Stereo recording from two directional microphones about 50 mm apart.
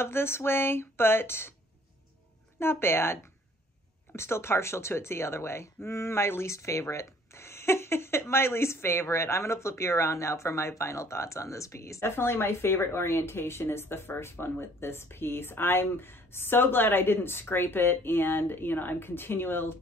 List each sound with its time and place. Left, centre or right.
0.0 s speech: left
2.6 s speech: left